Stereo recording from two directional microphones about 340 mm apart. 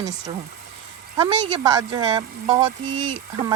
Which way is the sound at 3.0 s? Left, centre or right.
Right.